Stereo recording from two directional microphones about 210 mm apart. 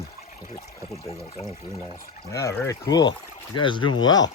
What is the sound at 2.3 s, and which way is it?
Speech, 15° left (ahead or behind).